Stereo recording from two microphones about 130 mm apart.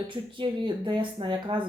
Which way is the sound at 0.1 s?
40° right (ahead or behind).